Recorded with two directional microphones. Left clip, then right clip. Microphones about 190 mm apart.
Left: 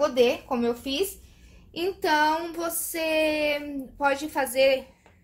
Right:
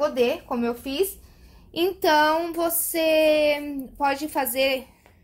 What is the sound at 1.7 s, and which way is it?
Child singing, 45° right (ahead or behind).